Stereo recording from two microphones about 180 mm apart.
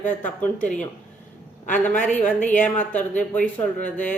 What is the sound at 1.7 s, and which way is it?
Speech, 10° left (ahead or behind).